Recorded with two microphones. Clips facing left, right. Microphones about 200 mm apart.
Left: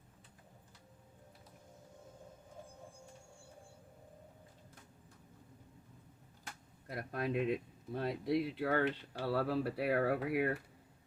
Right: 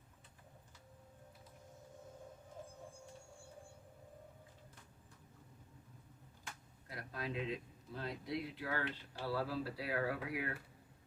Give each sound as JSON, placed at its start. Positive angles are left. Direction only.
{"t": 6.8, "sound": "speech", "side_deg": 55}